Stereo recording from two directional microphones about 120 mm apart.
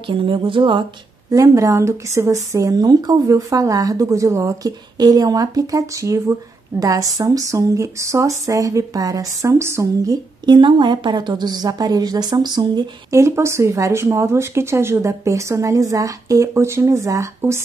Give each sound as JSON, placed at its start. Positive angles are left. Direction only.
{"t": 0.0, "sound": "speech", "side_deg": -45}
{"t": 1.3, "sound": "speech", "side_deg": -25}
{"t": 10.4, "sound": "a woman's voice", "side_deg": -40}
{"t": 13.2, "sound": "speech", "side_deg": -25}